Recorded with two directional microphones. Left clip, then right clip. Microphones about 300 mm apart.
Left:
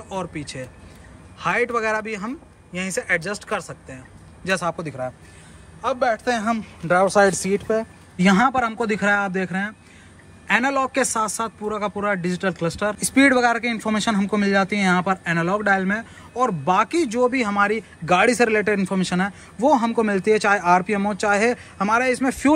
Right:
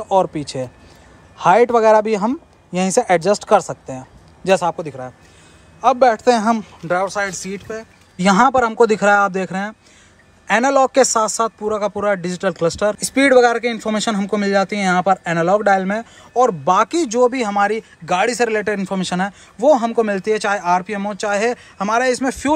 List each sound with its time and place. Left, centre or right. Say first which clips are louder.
0.1 s speech: right 13 dB; centre
6.9 s speech: left 3 dB; centre
8.2 s speech: right 5 dB; centre